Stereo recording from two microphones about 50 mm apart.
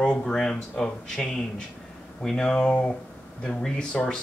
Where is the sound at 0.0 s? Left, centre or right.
Centre.